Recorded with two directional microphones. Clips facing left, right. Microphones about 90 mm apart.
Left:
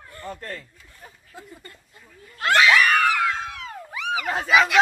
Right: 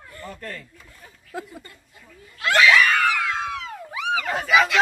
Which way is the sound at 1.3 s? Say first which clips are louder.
Right 11 dB; 90° right.